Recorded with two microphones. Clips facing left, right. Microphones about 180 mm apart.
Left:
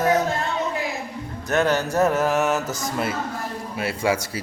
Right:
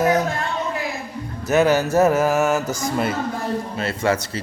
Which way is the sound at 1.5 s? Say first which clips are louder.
Right 4 dB; 5° right (ahead or behind).